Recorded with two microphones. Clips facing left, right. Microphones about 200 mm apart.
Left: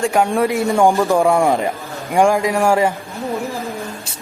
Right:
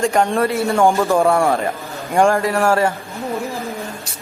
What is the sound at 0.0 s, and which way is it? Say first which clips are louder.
Speech: even; centre (ahead or behind).